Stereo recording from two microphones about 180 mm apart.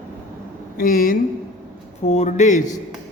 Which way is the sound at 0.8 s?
55° left (ahead or behind).